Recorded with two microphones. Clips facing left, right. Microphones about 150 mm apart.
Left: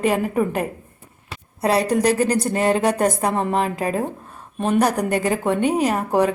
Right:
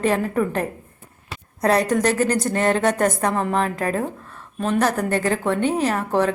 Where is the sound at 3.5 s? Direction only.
15° left (ahead or behind).